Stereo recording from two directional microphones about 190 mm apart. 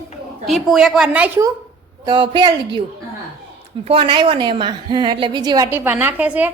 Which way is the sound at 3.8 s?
30° right (ahead or behind).